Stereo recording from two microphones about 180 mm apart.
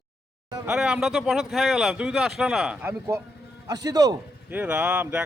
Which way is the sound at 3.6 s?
20° right (ahead or behind).